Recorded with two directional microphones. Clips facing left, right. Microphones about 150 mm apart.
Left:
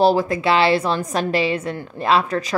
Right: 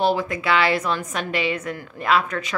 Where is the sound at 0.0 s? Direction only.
35° left (ahead or behind).